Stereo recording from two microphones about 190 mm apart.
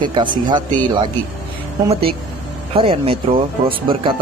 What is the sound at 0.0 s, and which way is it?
Speech, 25° right (ahead or behind).